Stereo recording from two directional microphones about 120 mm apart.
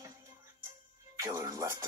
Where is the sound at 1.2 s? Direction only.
30° right (ahead or behind).